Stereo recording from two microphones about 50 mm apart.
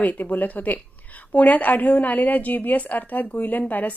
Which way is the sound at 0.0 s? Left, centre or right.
Left.